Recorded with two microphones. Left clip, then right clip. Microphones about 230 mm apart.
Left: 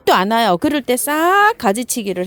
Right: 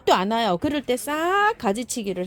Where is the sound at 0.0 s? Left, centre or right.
Left.